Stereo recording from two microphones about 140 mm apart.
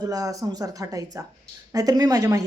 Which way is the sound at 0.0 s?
25° right (ahead or behind).